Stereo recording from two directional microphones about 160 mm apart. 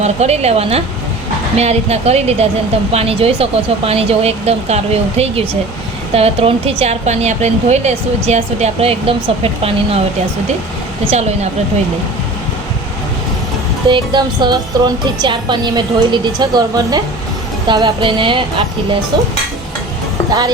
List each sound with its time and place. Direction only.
0.0 s a woman's voice: 45° right (ahead or behind)
13.8 s a woman's voice: 30° right (ahead or behind)